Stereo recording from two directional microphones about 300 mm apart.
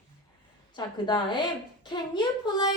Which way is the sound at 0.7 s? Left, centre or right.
Centre.